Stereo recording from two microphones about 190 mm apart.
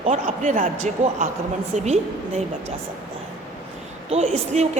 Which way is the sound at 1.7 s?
35° right (ahead or behind).